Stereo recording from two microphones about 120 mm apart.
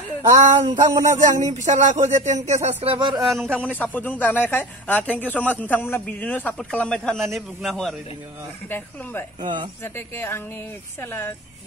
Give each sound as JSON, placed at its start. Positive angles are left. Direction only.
{"t": 0.3, "sound": "speech", "side_deg": -80}
{"t": 2.8, "sound": "speech", "side_deg": -45}
{"t": 3.2, "sound": "a man's voice", "side_deg": 0}
{"t": 3.9, "sound": "speech", "side_deg": 15}
{"t": 8.6, "sound": "speech", "side_deg": 15}
{"t": 9.4, "sound": "speech", "side_deg": -40}
{"t": 9.9, "sound": "speech", "side_deg": 20}